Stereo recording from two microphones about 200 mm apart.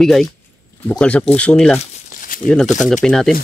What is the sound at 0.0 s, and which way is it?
Speech, centre (ahead or behind).